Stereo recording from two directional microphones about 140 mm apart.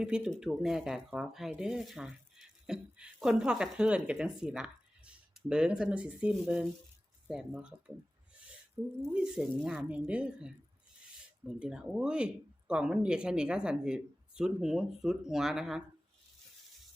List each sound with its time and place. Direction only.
0.0 s speech: 5° right (ahead or behind)
9.1 s speech: 5° right (ahead or behind)